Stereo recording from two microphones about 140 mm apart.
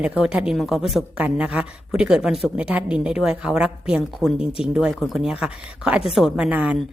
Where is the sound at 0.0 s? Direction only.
5° right (ahead or behind).